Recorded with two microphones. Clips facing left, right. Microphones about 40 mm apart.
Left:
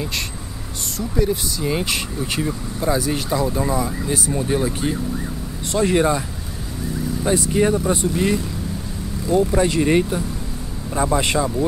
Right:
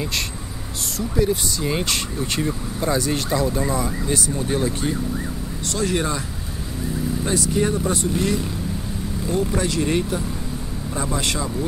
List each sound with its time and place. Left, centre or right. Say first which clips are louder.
0.9 s speech: even; centre
4.1 s speech: left 2 dB; centre
7.3 s speech: left 3 dB; left